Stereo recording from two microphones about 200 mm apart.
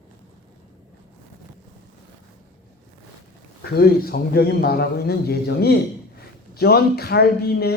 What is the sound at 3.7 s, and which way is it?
A man's voice, 50° left (ahead or behind).